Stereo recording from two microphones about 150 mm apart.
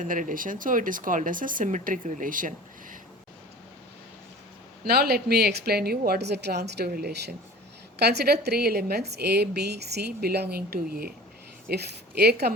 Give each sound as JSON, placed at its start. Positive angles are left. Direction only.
{"t": 0.0, "sound": "speech", "side_deg": -60}
{"t": 4.8, "sound": "a woman's voice", "side_deg": -90}